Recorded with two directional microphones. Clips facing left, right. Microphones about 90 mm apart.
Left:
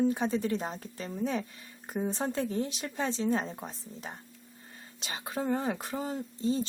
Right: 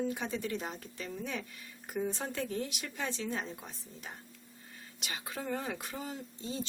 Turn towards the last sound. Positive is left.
turn(degrees=40)  # may be behind; listen again after turning